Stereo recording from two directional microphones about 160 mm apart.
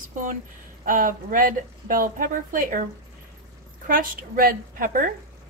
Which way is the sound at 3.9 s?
60° right (ahead or behind).